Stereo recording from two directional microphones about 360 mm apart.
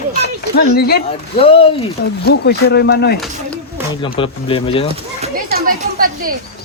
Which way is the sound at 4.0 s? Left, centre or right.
Centre.